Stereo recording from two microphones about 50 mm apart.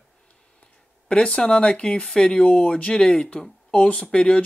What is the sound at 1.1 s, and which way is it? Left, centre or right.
Speech, centre.